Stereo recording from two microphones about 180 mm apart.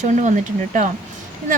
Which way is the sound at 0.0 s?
40° right (ahead or behind).